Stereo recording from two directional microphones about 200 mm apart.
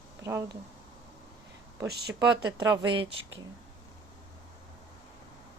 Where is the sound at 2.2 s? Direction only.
20° right (ahead or behind).